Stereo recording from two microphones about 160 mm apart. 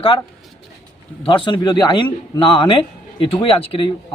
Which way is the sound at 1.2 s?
30° left (ahead or behind).